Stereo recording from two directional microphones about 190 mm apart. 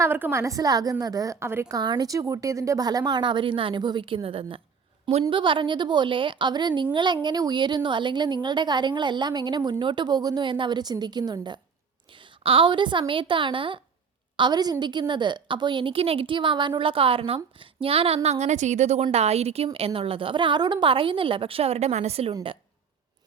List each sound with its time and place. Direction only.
0.0 s a woman's voice: 10° right (ahead or behind); by 22.4 s 35° right (ahead or behind)